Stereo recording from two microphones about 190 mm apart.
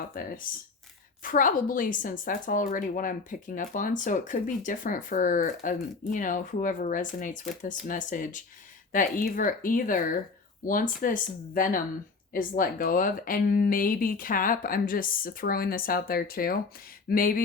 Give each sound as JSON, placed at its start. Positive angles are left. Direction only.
{"t": 0.1, "sound": "a woman's voice", "side_deg": 50}